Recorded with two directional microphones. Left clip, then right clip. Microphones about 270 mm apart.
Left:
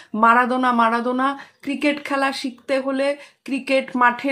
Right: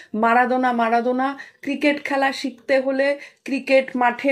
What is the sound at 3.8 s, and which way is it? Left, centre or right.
Speech, centre.